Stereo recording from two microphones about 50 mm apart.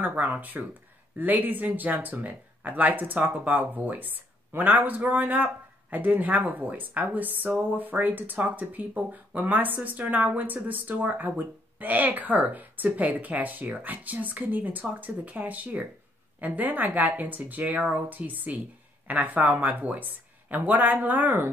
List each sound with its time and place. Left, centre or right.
0.1 s speech: right